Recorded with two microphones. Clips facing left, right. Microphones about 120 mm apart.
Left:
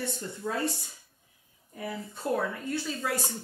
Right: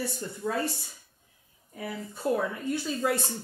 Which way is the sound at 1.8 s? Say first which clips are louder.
Right 1 dB; 5° right (ahead or behind).